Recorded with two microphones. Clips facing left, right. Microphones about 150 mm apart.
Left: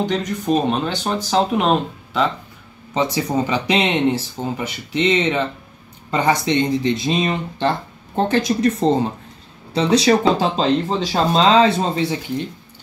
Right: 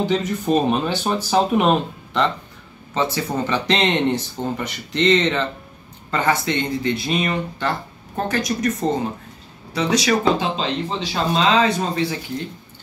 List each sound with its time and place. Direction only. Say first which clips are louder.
0.0 s speech: right 1 dB; 5° right (ahead or behind)
2.9 s speech: left 2 dB; 15° left (ahead or behind)